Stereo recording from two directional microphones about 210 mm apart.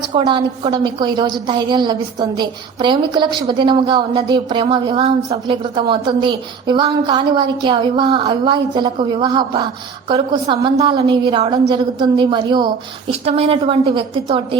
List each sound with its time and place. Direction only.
0.1 s speech: 20° right (ahead or behind)